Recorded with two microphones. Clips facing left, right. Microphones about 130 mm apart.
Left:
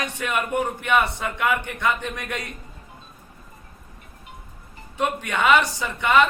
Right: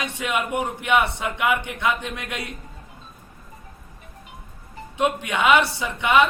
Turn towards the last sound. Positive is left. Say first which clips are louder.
# even
turn(degrees=-15)  # may be behind; listen again after turning